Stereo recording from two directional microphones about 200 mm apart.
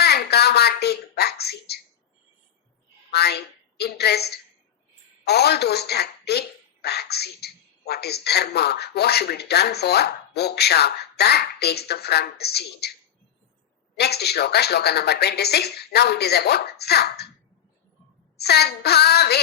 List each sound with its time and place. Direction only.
0.0 s a sound: 55° left (ahead or behind)
3.1 s a woman's voice: 55° left (ahead or behind)
13.9 s speech: 55° left (ahead or behind)
18.3 s speech: 55° left (ahead or behind)